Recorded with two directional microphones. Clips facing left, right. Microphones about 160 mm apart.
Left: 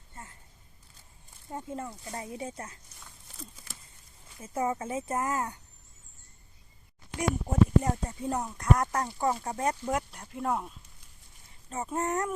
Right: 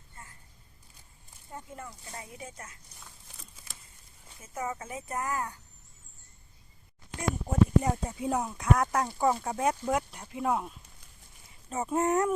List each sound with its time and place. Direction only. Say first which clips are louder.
1.5 s speech: left 6 dB; 25° left (ahead or behind)
4.4 s speech: left 5 dB; 30° left (ahead or behind)
7.4 s speech: right 1 dB; 5° right (ahead or behind)
11.7 s speech: right 4 dB; 10° right (ahead or behind)